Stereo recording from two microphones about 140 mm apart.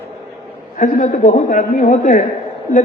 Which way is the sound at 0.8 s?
65° left (ahead or behind).